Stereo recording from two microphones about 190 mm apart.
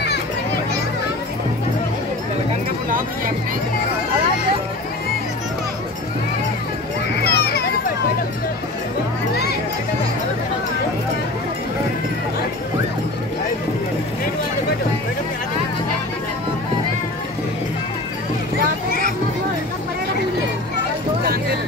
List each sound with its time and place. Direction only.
7.2 s children playing: 55° left (ahead or behind)
9.3 s music: 60° left (ahead or behind)
18.9 s a sound: 50° left (ahead or behind)